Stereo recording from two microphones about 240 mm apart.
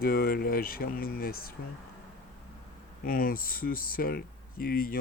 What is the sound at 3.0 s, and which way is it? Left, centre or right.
Speech, left.